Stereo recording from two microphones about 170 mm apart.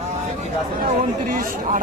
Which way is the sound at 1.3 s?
50° right (ahead or behind).